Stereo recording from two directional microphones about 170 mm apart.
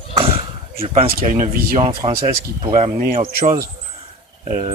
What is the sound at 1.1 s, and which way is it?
Speech, 55° right (ahead or behind).